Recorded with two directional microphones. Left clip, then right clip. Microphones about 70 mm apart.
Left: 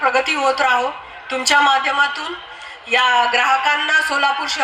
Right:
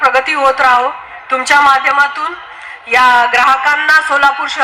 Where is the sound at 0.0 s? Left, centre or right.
Right.